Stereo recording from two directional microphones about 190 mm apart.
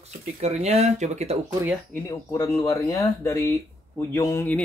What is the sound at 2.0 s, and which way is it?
Speech, 15° left (ahead or behind).